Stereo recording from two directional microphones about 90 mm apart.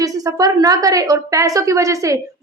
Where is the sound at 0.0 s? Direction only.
40° right (ahead or behind).